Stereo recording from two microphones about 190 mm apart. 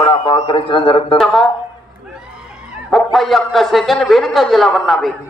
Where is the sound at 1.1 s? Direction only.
Centre (ahead or behind).